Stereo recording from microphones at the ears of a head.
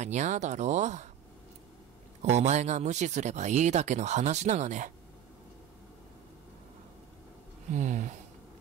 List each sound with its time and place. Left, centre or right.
0.0 s speech: right
2.2 s speech: right
7.6 s speech: right